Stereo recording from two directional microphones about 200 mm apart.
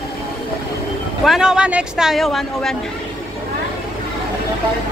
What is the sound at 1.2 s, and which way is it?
Speech, centre (ahead or behind).